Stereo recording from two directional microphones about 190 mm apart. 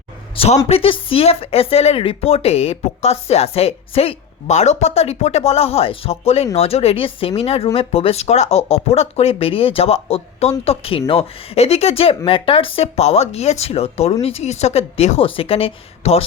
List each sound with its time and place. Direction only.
0.3 s speech: 35° left (ahead or behind)